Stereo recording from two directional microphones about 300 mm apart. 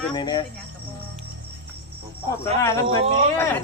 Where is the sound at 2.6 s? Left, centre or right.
Centre.